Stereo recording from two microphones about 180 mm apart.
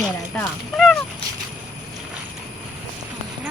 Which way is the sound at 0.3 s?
Centre (ahead or behind).